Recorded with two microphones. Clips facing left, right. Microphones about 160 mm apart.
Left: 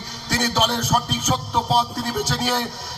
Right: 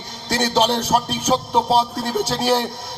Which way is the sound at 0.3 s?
30° right (ahead or behind).